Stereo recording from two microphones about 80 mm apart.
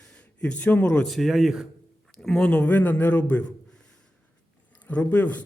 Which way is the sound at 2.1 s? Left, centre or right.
Centre.